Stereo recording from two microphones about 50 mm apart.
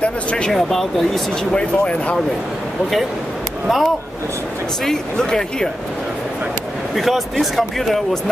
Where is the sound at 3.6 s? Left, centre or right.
Centre.